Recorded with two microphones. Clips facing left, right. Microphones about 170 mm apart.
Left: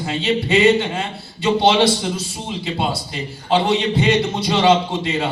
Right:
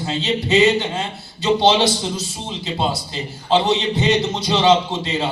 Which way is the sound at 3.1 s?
25° right (ahead or behind).